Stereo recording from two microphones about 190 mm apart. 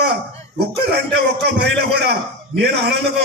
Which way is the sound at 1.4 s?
65° right (ahead or behind).